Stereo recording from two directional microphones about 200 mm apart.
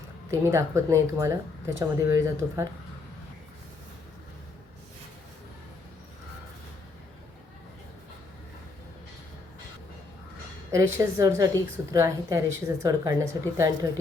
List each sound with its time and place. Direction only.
0.3 s a woman's voice: 15° right (ahead or behind)
10.7 s a woman's voice: 15° right (ahead or behind)